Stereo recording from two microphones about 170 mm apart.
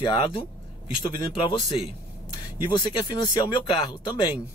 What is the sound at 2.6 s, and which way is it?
Speech, 25° left (ahead or behind).